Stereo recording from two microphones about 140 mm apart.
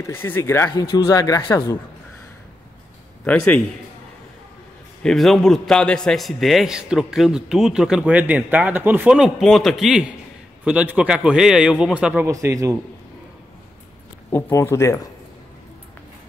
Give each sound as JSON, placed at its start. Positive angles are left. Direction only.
{"t": 0.0, "sound": "speech", "side_deg": 15}
{"t": 5.0, "sound": "a man's voice", "side_deg": 0}
{"t": 12.3, "sound": "a man's voice", "side_deg": -20}
{"t": 14.3, "sound": "speech", "side_deg": 20}